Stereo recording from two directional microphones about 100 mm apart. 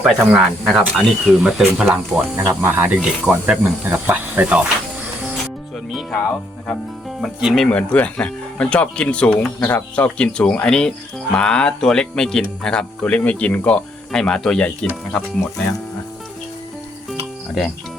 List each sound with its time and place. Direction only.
0.0 s speech: 5° right (ahead or behind)
2.3 s speech: 25° right (ahead or behind)
5.9 s speech: centre (ahead or behind)
7.2 s speech: centre (ahead or behind)